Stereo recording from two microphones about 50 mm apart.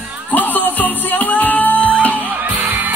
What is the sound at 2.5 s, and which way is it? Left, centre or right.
Music, right.